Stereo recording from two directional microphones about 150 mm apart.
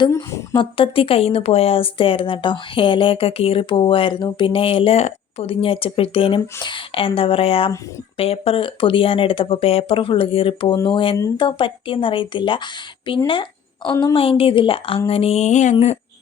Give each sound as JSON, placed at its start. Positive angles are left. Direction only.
{"t": 0.1, "sound": "a woman's voice", "side_deg": 20}
{"t": 0.5, "sound": "a woman's voice", "side_deg": 35}